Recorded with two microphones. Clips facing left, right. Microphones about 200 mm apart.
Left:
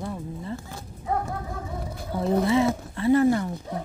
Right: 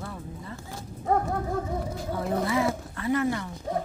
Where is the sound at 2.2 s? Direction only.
25° left (ahead or behind).